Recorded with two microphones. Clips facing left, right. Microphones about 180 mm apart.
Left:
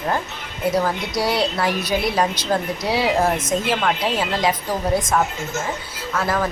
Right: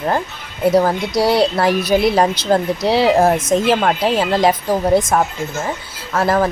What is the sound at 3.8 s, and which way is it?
Speech, 40° right (ahead or behind).